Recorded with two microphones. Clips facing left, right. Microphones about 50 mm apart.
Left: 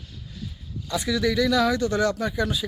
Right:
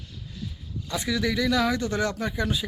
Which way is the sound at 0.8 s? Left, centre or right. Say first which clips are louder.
Left 3 dB; right.